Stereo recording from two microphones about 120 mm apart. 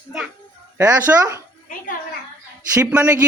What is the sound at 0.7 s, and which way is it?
Speech, 25° right (ahead or behind).